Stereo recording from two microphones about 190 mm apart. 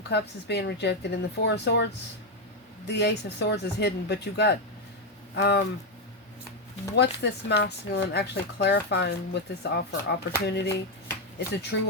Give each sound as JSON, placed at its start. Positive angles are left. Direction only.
{"t": 0.1, "sound": "speech", "side_deg": 60}
{"t": 6.9, "sound": "speech", "side_deg": 65}